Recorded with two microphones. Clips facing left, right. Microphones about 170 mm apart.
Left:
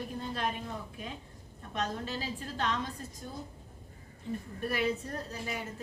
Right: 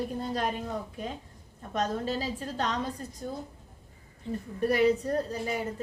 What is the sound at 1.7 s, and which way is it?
A woman's voice, 40° right (ahead or behind).